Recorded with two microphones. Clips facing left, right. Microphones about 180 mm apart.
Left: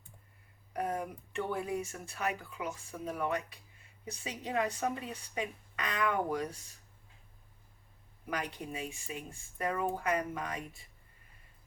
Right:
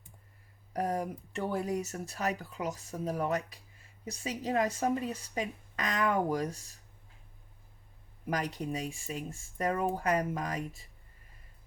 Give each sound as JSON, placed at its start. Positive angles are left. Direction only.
{"t": 0.7, "sound": "speech", "side_deg": -40}
{"t": 8.3, "sound": "speech", "side_deg": -40}